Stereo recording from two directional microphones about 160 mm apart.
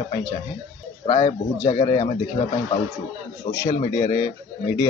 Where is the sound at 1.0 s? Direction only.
40° left (ahead or behind).